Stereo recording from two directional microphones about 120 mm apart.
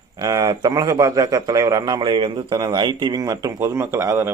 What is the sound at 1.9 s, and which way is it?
Speech, 40° right (ahead or behind).